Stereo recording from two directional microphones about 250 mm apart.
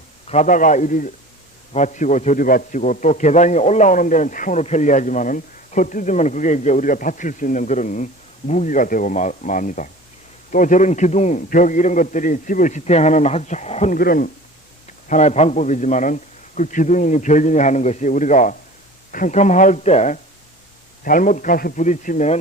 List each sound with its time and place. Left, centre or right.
0.3 s a man's voice: left